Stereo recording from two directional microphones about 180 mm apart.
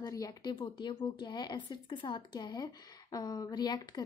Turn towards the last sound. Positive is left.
turn(degrees=20)  # may be behind; listen again after turning